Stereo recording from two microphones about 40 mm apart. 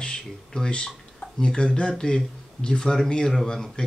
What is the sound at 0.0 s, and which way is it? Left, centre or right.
Speech, left.